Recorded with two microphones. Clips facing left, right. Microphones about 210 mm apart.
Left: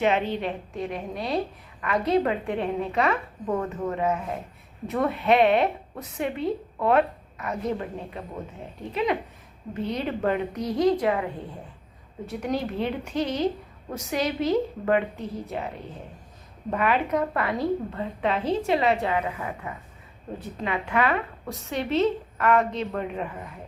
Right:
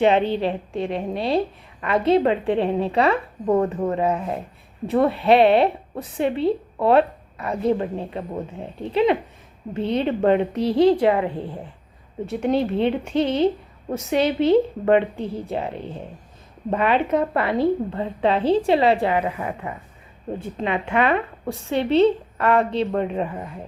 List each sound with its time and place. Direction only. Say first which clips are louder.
0.0 s a woman's voice: right 6 dB; 30° right (ahead or behind)